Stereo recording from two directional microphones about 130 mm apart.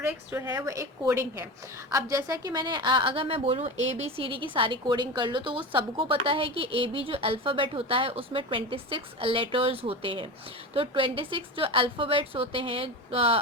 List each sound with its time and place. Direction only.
0.0 s a woman's voice: 25° right (ahead or behind); by 4.1 s 60° right (ahead or behind)
4.2 s a woman's voice: 40° right (ahead or behind)